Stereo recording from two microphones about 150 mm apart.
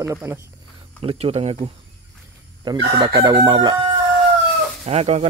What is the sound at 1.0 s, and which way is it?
Speech, 45° right (ahead or behind).